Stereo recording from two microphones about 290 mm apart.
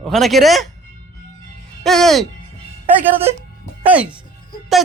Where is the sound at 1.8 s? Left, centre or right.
Centre.